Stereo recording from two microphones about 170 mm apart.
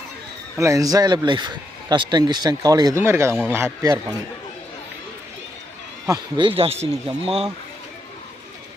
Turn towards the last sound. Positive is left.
turn(degrees=-35)  # may be behind; listen again after turning